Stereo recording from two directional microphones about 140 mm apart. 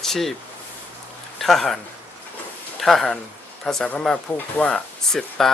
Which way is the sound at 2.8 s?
Centre (ahead or behind).